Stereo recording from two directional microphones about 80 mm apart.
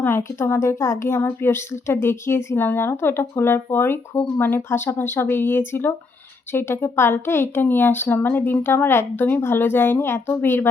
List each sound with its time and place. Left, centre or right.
0.6 s a woman's voice: left